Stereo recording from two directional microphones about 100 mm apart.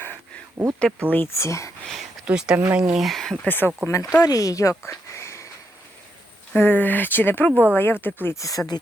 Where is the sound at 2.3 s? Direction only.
10° right (ahead or behind).